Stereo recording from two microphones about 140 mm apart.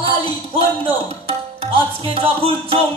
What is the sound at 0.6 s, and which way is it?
Speech, 40° right (ahead or behind).